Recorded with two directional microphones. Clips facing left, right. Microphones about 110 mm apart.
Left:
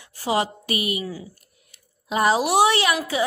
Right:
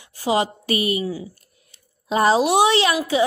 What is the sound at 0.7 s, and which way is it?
Speech, 35° right (ahead or behind).